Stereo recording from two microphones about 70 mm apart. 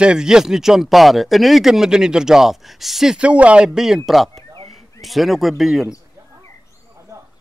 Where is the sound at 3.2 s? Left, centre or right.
Centre.